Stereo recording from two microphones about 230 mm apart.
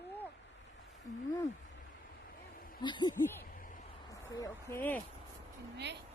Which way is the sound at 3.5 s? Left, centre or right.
Left.